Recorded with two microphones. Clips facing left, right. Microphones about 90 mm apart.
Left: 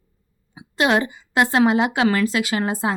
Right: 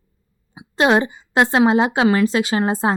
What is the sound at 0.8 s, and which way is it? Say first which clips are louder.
A woman's voice: right 3 dB; 25° right (ahead or behind).